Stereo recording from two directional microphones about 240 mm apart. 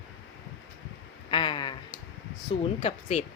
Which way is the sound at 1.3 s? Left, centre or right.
Centre.